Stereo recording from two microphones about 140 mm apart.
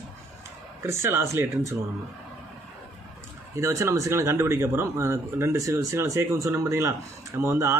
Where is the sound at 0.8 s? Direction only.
20° right (ahead or behind).